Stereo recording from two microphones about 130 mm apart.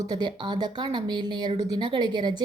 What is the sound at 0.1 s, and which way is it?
A woman's voice, 35° right (ahead or behind).